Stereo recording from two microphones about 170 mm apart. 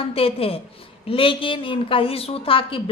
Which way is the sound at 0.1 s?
35° left (ahead or behind).